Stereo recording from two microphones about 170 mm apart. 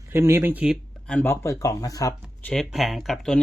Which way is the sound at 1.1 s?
10° left (ahead or behind).